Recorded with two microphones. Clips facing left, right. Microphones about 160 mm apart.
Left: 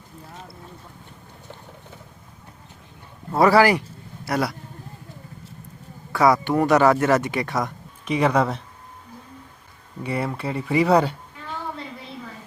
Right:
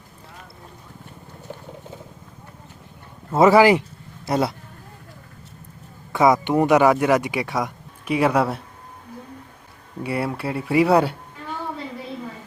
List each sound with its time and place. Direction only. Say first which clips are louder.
3.3 s speech: right 3 dB; 20° right (ahead or behind)
6.1 s speech: right 1 dB; 20° right (ahead or behind)
10.0 s speech: right 1 dB; 5° right (ahead or behind)